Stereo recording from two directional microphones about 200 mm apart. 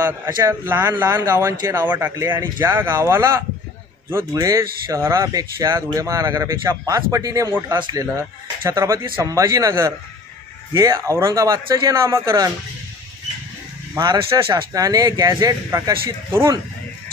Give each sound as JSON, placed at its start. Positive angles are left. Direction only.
{"t": 0.0, "sound": "speech", "side_deg": -10}
{"t": 13.9, "sound": "speech", "side_deg": -20}